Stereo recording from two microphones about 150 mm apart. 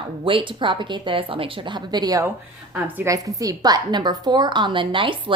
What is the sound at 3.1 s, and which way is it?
A woman's voice, 25° right (ahead or behind).